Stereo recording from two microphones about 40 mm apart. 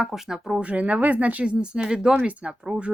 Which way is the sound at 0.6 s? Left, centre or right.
Right.